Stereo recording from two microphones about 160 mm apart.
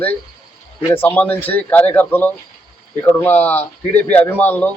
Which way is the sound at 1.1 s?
10° left (ahead or behind).